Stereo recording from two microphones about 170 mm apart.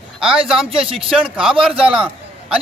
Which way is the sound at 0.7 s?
35° right (ahead or behind).